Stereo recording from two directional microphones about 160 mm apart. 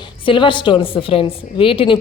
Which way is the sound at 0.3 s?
30° left (ahead or behind).